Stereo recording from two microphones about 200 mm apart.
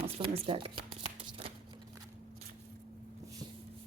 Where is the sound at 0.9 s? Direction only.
30° right (ahead or behind).